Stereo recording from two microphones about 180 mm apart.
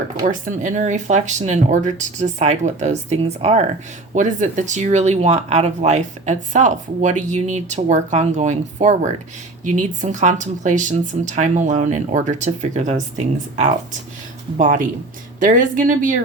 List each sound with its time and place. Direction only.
0.3 s a woman's voice: 45° right (ahead or behind)